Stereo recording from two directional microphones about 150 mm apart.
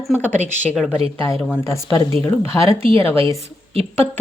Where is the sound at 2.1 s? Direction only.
40° right (ahead or behind).